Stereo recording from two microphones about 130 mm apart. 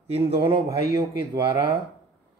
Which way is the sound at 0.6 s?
25° right (ahead or behind).